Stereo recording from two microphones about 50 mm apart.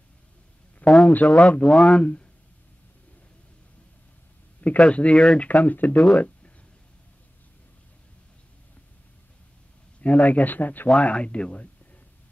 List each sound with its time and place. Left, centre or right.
1.0 s speech: left
4.6 s speech: left
5.5 s speech: left
6.1 s a sound: left
9.9 s speech: left
10.9 s speech: left